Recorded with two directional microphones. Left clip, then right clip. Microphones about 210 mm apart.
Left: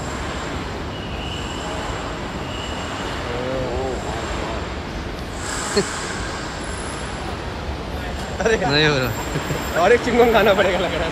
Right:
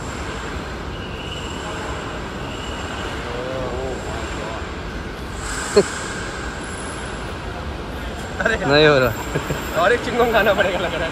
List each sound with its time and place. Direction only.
5.8 s speech: 10° left (ahead or behind)
8.6 s speech: 10° left (ahead or behind)
9.8 s speech: 45° left (ahead or behind)